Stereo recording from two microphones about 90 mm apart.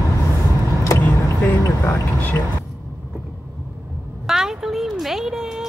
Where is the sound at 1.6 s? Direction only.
35° left (ahead or behind).